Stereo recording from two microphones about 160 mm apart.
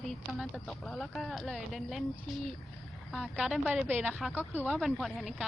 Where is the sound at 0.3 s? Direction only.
Centre (ahead or behind).